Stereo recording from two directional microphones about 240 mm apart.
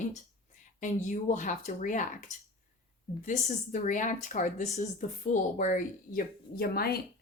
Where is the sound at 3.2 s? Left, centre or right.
Left.